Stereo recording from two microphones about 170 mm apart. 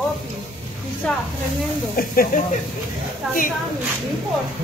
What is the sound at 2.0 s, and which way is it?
Speech, 55° left (ahead or behind).